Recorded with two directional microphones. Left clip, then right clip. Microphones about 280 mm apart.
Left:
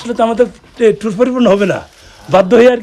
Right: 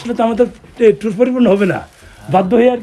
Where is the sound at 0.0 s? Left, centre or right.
Centre.